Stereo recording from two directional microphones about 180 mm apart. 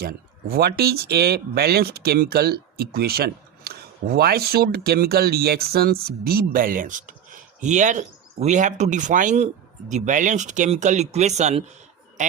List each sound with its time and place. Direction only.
0.0 s speech: 60° right (ahead or behind); by 12.3 s 40° right (ahead or behind)